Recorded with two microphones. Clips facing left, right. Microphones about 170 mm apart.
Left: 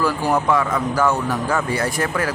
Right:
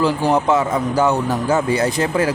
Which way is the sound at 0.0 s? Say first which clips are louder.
Right 3 dB; 25° right (ahead or behind).